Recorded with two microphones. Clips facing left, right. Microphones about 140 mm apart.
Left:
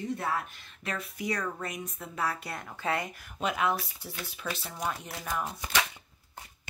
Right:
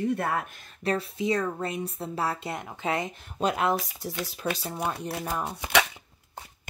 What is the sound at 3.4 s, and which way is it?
Speech, 35° right (ahead or behind).